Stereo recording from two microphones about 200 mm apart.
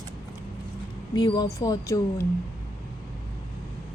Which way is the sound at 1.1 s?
20° left (ahead or behind).